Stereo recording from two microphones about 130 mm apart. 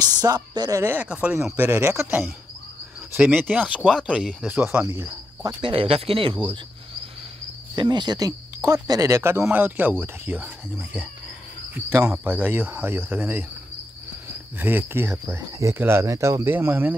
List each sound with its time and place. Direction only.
0.2 s speech: 30° right (ahead or behind)
0.8 s cricket: 10° right (ahead or behind)
1.9 s speech: 20° right (ahead or behind)
3.2 s cricket: 15° right (ahead or behind)
5.6 s speech: 40° right (ahead or behind)
7.7 s speech: 35° right (ahead or behind); by 11.1 s 10° right (ahead or behind)
11.9 s cricket: 15° right (ahead or behind)
14.6 s speech: 15° right (ahead or behind)